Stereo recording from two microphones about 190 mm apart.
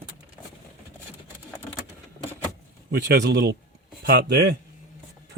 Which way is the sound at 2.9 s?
60° right (ahead or behind).